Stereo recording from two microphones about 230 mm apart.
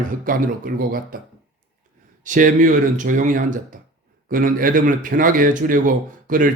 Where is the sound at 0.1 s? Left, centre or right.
Right.